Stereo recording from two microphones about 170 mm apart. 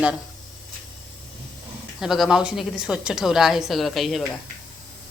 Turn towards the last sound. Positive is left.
turn(degrees=0)  # may be behind; listen again after turning